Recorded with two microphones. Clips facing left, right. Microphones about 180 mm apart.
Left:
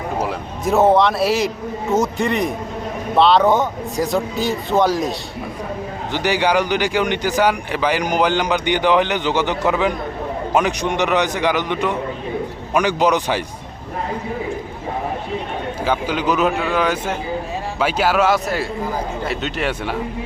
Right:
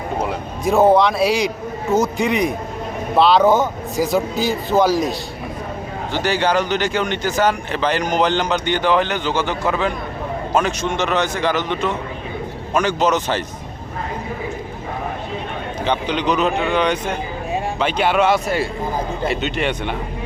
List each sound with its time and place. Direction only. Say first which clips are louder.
0.2 s a man's voice: even; centre (ahead or behind)
6.1 s speech: left 1 dB; 15° left (ahead or behind)
15.8 s a man's voice: even; 5° left (ahead or behind)